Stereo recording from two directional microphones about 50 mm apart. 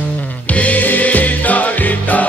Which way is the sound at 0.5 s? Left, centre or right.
Left.